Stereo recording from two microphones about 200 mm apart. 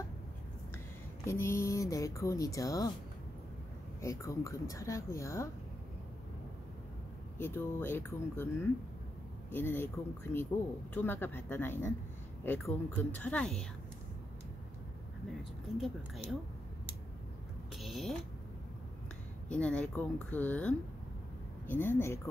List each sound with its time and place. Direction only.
1.2 s speech: 15° left (ahead or behind)
4.0 s speech: 15° left (ahead or behind)
7.3 s speech: 10° left (ahead or behind)
9.5 s speech: 10° left (ahead or behind)
15.8 s speech: centre (ahead or behind)
17.7 s a sound: centre (ahead or behind)
19.5 s speech: 5° left (ahead or behind)